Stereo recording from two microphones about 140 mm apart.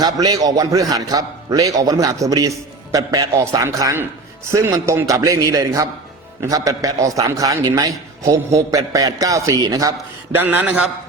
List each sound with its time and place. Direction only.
0.0 s a man's voice: 30° right (ahead or behind)
10.3 s a man's voice: 15° right (ahead or behind)